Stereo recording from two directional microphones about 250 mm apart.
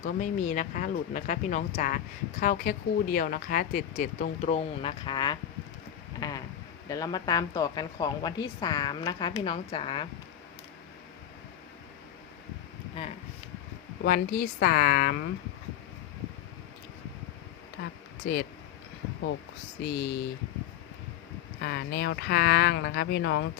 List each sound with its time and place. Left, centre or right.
0.0 s speech: left
6.1 s a sound: centre
6.8 s a woman's voice: centre
14.0 s speech: left
18.3 s speech: left
19.8 s speech: left
21.6 s speech: left